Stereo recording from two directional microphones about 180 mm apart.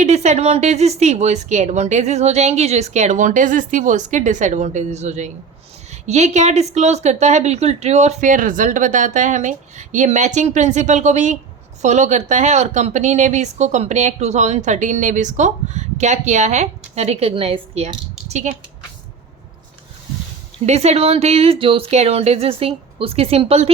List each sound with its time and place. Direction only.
0.0 s a woman's voice: 40° right (ahead or behind)
20.7 s a woman's voice: 35° right (ahead or behind)